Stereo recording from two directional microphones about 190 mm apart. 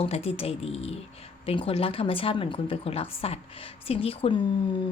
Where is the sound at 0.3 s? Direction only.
30° left (ahead or behind).